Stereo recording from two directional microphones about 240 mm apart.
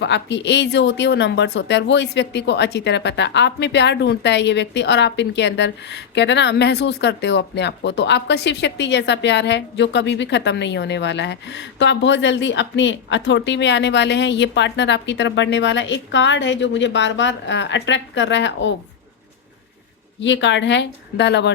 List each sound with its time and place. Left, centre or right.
0.0 s speech: left
20.2 s speech: left